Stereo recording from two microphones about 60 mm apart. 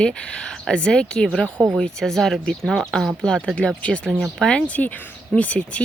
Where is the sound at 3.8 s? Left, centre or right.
Centre.